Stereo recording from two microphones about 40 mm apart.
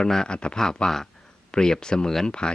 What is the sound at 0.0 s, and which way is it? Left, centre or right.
Speech, centre.